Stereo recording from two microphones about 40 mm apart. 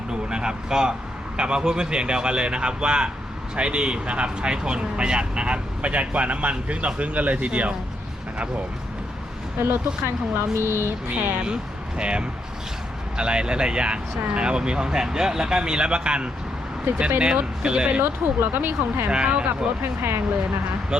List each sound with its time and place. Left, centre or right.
0.1 s speech: right
10.3 s speech: right
11.1 s speech: right
18.0 s speech: right
19.1 s speech: right
19.8 s speech: right
20.9 s speech: right